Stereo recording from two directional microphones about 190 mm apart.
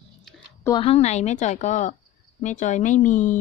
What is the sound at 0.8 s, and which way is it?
Speech, 30° left (ahead or behind).